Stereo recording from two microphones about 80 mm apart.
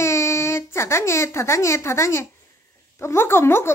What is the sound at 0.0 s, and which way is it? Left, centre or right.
Speech, left.